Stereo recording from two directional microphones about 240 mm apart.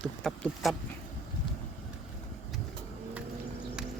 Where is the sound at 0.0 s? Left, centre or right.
Centre.